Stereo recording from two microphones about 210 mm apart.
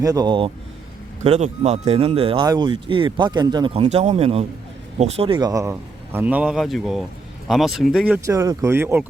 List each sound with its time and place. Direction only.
0.0 s speech: 20° right (ahead or behind)